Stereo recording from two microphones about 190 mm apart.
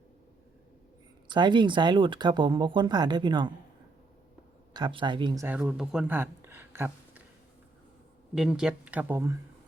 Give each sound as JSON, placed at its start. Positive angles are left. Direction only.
{"t": 1.3, "sound": "speech", "side_deg": -25}
{"t": 4.7, "sound": "speech", "side_deg": -25}
{"t": 8.4, "sound": "speech", "side_deg": -5}